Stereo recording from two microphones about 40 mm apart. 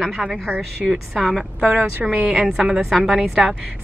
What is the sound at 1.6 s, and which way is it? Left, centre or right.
Speech, right.